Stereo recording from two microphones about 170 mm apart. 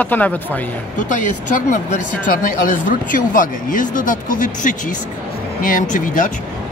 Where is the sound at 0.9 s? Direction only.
50° left (ahead or behind).